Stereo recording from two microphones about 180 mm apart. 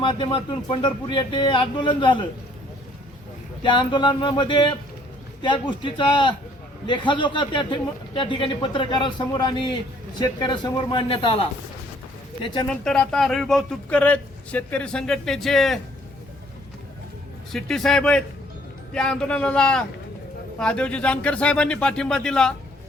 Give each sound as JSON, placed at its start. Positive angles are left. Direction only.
{"t": 0.0, "sound": "a man's voice", "side_deg": 30}
{"t": 3.6, "sound": "a man's voice", "side_deg": 25}
{"t": 12.6, "sound": "speech", "side_deg": 5}
{"t": 17.5, "sound": "speech", "side_deg": 0}